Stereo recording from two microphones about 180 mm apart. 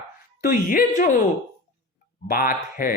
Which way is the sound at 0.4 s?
50° left (ahead or behind).